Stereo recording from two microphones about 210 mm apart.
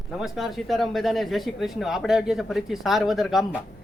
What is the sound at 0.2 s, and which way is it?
Speech, centre (ahead or behind).